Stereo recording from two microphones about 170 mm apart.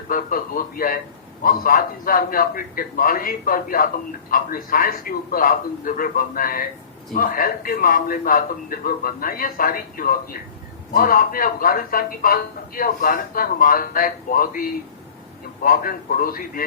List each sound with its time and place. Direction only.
0.1 s speech: 55° left (ahead or behind)